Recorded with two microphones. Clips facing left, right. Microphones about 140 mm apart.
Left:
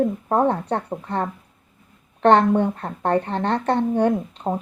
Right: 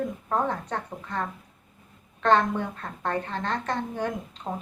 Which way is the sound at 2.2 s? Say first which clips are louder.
Left 7 dB; 60° left (ahead or behind).